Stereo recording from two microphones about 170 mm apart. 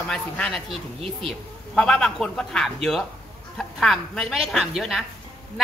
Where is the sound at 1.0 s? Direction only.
35° right (ahead or behind).